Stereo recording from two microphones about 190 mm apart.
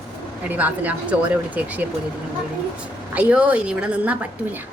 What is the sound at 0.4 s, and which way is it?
A woman's voice, 10° right (ahead or behind).